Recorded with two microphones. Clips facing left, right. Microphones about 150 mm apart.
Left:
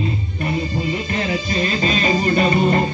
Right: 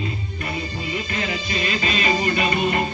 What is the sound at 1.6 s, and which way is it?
Music, 35° left (ahead or behind).